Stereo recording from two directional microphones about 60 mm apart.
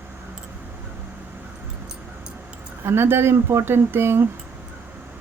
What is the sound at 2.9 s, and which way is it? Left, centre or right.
Speech, right.